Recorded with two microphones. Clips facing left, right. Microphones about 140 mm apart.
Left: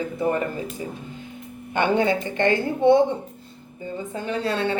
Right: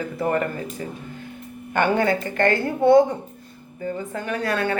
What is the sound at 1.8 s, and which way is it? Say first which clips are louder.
Speech: even; 20° left (ahead or behind).